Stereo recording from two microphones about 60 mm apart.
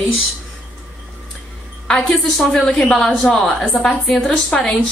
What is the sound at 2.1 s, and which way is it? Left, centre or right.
A woman's voice, centre.